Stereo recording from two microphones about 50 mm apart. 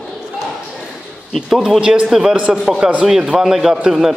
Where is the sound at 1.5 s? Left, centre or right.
Centre.